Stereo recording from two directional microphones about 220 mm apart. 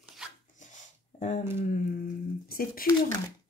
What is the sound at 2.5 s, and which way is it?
Speech, 40° left (ahead or behind).